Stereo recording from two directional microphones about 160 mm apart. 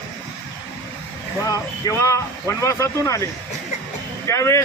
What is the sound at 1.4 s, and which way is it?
Speech, 20° left (ahead or behind).